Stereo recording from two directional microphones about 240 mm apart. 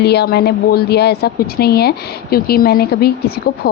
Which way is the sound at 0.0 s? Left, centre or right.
Left.